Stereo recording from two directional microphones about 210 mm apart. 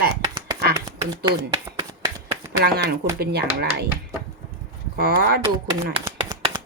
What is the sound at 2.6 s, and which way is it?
A woman's voice, 50° right (ahead or behind).